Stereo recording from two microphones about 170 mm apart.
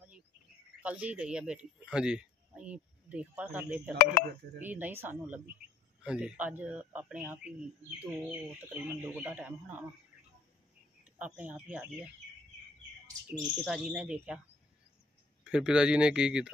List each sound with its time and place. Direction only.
0.8 s a man's voice: 10° right (ahead or behind)
11.1 s a man's voice: 10° right (ahead or behind)
13.0 s speech: 25° right (ahead or behind)
13.8 s speech: 5° right (ahead or behind)
15.5 s speech: 5° right (ahead or behind)